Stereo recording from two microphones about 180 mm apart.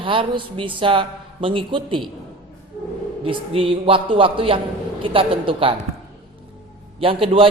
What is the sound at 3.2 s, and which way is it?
A woman's voice, 30° right (ahead or behind).